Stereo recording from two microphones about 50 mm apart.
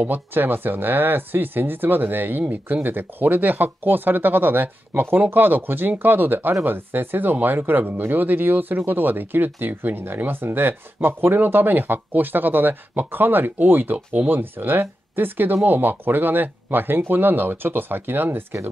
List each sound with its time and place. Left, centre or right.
0.0 s speech: right